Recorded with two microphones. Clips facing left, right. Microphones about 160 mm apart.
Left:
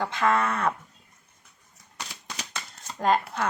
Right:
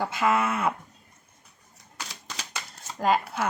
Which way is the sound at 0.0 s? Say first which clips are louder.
Even; 5° right (ahead or behind).